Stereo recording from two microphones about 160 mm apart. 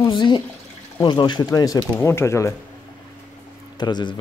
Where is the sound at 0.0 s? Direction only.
30° left (ahead or behind).